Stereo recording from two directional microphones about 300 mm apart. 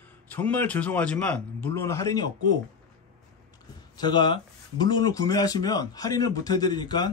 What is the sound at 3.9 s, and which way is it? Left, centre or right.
Speech, centre.